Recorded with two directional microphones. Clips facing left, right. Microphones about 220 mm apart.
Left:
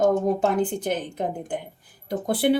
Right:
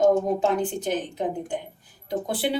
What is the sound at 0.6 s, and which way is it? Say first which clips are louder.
Speech: left 1 dB; 55° left (ahead or behind).